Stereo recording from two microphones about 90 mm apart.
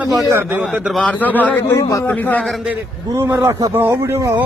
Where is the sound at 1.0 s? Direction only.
20° left (ahead or behind).